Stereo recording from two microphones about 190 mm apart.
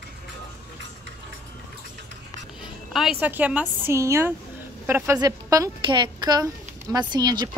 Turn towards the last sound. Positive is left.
turn(degrees=-20)  # may be behind; listen again after turning